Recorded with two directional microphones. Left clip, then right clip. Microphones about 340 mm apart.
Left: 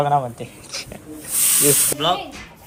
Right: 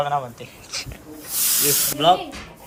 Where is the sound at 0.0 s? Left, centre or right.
Centre.